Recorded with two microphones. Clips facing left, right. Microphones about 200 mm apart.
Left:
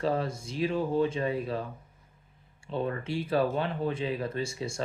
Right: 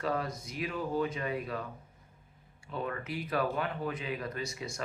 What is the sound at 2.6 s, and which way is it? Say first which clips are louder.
Speech: left 5 dB; 30° left (ahead or behind).